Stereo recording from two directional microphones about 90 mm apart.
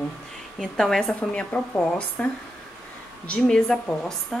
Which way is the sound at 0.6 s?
5° left (ahead or behind).